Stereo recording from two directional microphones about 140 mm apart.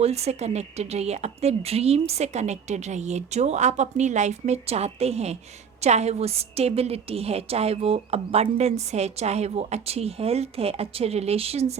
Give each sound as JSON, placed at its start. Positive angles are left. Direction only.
{"t": 0.0, "sound": "a woman's voice", "side_deg": -50}